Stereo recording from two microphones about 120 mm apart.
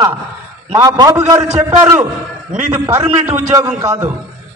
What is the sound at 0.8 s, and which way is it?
A man's voice, 30° right (ahead or behind).